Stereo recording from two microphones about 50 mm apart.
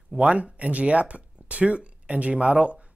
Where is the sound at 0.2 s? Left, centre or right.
Right.